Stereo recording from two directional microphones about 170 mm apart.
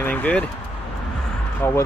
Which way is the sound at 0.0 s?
10° left (ahead or behind).